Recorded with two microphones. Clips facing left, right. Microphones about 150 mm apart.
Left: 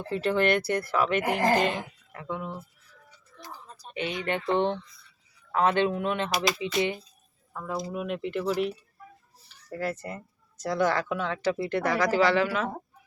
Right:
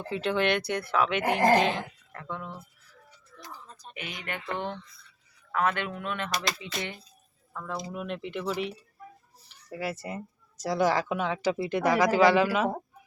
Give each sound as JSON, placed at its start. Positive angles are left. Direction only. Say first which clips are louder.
{"t": 0.1, "sound": "speech", "louder": "left 2 dB", "side_deg": 0}
{"t": 2.1, "sound": "speech", "louder": "left 4 dB", "side_deg": 15}
{"t": 3.9, "sound": "speech", "louder": "left 9 dB", "side_deg": 30}
{"t": 9.7, "sound": "speech", "louder": "left 1 dB", "side_deg": -10}